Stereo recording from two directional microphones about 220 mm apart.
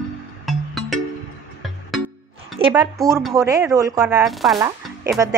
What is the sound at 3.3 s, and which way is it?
Speech, 15° right (ahead or behind).